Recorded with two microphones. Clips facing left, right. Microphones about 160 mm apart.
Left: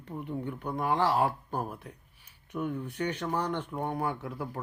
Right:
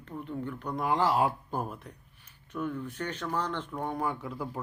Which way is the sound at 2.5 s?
15° left (ahead or behind).